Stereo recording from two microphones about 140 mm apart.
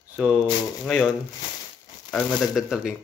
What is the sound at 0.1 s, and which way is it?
Speech, 10° right (ahead or behind).